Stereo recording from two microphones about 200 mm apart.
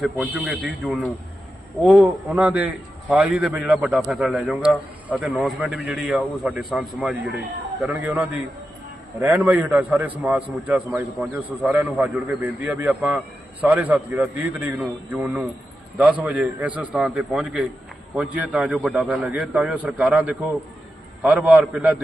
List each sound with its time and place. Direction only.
0.0 s a man's voice: 5° right (ahead or behind)